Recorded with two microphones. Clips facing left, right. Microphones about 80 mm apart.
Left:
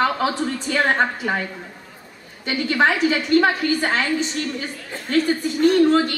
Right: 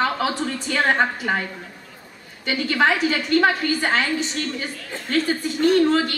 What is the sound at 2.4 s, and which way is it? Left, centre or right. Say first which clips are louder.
A woman's voice: left 1 dB; left.